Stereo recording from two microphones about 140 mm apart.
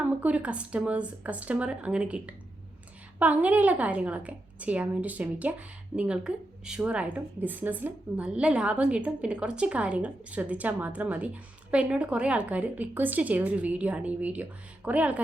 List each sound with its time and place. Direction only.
0.0 s a woman's voice: 10° right (ahead or behind)